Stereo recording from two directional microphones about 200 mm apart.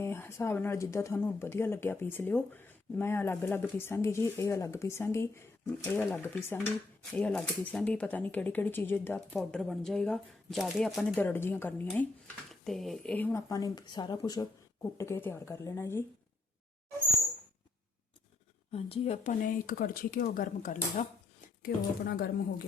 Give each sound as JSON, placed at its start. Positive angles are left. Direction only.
{"t": 0.0, "sound": "speech", "side_deg": 10}
{"t": 18.7, "sound": "speech", "side_deg": 30}
{"t": 21.6, "sound": "a woman's voice", "side_deg": 50}